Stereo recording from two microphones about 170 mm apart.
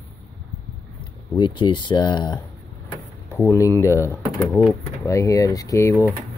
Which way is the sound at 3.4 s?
15° left (ahead or behind).